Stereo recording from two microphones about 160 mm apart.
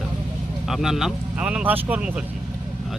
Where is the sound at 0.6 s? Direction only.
Centre (ahead or behind).